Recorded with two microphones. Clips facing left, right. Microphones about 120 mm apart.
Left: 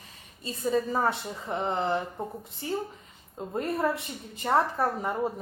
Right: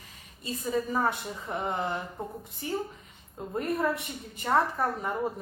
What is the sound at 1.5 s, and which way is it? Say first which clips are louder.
A woman's voice: left 3 dB; 25° left (ahead or behind).